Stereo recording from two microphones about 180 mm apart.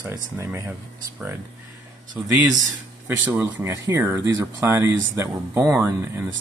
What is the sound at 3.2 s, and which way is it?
Speech, 15° right (ahead or behind).